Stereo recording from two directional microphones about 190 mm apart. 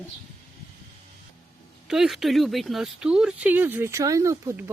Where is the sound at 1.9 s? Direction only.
Centre (ahead or behind).